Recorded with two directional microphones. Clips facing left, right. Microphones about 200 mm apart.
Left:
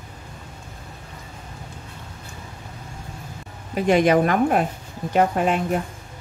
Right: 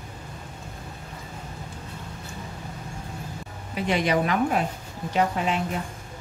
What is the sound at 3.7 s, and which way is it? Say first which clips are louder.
A woman's voice: left 7 dB; 50° left (ahead or behind).